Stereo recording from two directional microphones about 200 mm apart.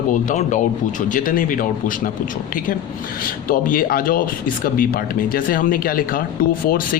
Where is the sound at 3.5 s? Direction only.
45° left (ahead or behind).